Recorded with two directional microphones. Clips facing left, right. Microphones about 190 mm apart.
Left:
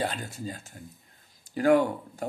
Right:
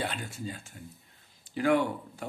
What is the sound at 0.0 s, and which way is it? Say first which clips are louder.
Speech: left 3 dB; 40° left (ahead or behind).